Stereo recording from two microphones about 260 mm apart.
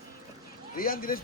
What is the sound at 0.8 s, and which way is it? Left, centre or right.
Speech, left.